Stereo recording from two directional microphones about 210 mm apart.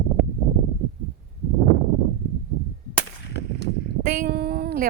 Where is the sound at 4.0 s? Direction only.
45° right (ahead or behind).